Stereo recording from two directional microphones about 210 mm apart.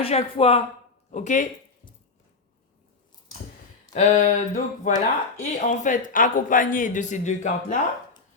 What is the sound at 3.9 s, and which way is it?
Speech, 35° left (ahead or behind).